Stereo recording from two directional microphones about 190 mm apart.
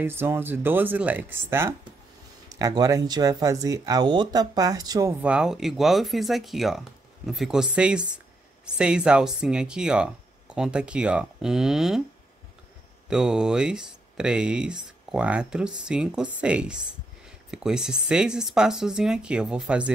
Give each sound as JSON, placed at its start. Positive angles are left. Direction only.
{"t": 0.0, "sound": "speech", "side_deg": -10}
{"t": 5.2, "sound": "speech", "side_deg": -5}
{"t": 13.1, "sound": "speech", "side_deg": -5}